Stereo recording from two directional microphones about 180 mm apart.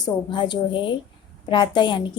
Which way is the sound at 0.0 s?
25° left (ahead or behind).